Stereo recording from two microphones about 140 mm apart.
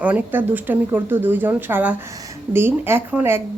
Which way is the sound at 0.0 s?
10° right (ahead or behind).